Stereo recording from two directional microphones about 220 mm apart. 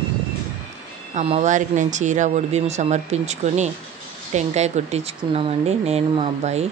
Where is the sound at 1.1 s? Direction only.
30° right (ahead or behind).